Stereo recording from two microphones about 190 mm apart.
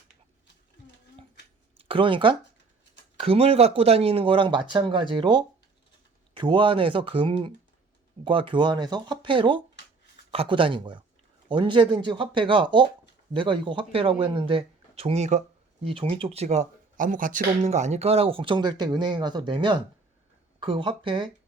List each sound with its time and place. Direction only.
1.8 s speech: 30° right (ahead or behind)